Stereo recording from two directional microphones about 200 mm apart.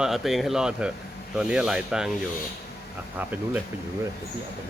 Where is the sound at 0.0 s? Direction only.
Centre (ahead or behind).